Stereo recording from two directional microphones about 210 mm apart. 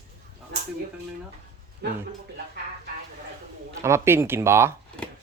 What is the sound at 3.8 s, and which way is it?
Speech, 10° right (ahead or behind).